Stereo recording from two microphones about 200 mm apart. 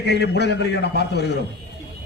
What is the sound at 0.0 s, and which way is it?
A man's voice, 55° left (ahead or behind).